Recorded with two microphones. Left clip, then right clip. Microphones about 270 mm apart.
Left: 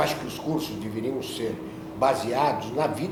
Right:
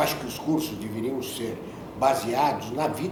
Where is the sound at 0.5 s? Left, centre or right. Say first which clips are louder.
Right 1 dB; left.